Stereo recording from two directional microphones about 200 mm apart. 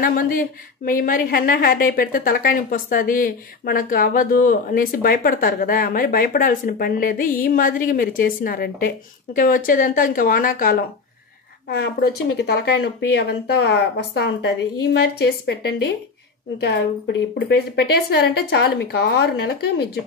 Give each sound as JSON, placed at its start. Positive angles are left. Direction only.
{"t": 0.0, "sound": "a woman's voice", "side_deg": 45}
{"t": 16.5, "sound": "a woman's voice", "side_deg": 55}